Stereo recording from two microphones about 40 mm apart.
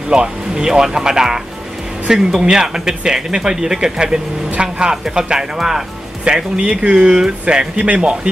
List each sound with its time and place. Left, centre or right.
0.1 s speech: right